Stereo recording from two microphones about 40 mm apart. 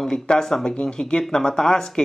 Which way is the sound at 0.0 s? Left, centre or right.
Centre.